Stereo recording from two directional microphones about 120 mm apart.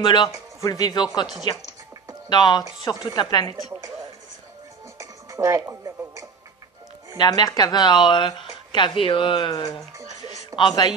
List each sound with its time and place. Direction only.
0.0 s speech: 40° left (ahead or behind)
4.9 s music: 25° right (ahead or behind)
7.2 s speech: 30° left (ahead or behind)
10.6 s speech: 35° left (ahead or behind)